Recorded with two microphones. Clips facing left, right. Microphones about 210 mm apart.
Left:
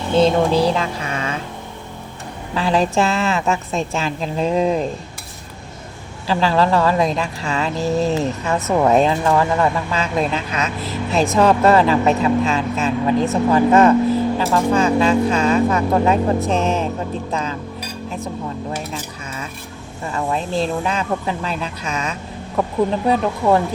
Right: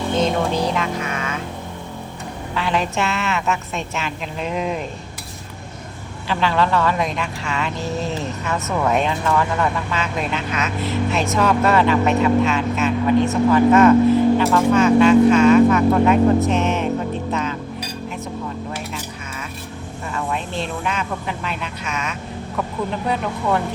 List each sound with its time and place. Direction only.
0.2 s a sound: 30° left (ahead or behind)
2.6 s speech: 35° left (ahead or behind)
6.2 s speech: 35° left (ahead or behind)
20.1 s speech: 35° left (ahead or behind)